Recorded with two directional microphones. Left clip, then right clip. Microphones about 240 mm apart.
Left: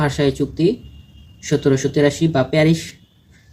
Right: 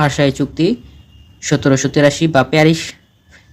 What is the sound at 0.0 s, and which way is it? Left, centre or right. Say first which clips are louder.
Speech: right 4 dB; right.